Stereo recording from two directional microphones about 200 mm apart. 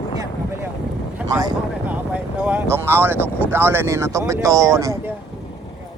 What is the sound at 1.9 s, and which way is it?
Speech, 5° right (ahead or behind).